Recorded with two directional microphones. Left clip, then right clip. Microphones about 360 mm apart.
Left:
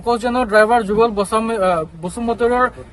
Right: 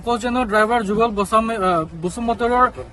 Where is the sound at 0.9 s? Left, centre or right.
Centre.